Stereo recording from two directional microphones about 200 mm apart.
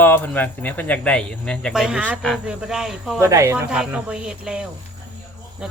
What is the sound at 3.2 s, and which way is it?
A woman's voice, 15° right (ahead or behind).